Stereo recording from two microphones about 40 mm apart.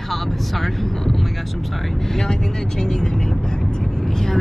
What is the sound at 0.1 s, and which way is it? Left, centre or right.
Vehicle, centre.